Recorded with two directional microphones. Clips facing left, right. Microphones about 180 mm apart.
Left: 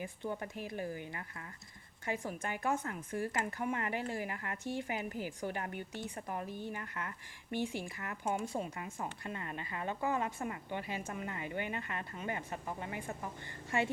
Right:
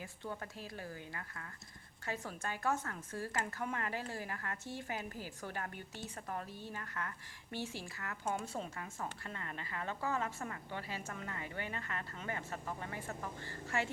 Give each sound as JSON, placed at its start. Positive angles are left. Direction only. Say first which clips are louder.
{"t": 0.0, "sound": "a woman's voice", "louder": "left 5 dB", "side_deg": 15}